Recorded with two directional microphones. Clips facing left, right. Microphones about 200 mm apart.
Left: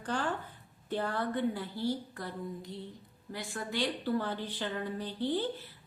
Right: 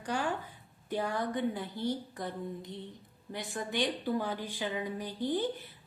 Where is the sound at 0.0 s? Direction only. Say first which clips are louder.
Even; 10° right (ahead or behind).